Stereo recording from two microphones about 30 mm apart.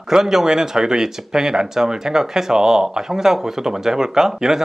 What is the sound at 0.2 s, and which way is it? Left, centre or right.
Speech, centre.